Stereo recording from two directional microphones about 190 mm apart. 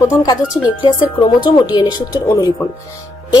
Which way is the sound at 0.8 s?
25° left (ahead or behind).